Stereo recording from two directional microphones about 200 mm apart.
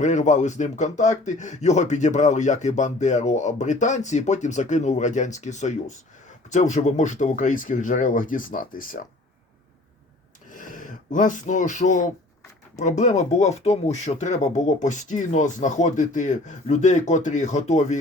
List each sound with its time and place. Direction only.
0.0 s speech: 35° left (ahead or behind)
10.5 s speech: 40° left (ahead or behind)